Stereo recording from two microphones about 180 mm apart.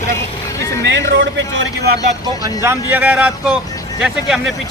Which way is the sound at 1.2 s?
75° right (ahead or behind).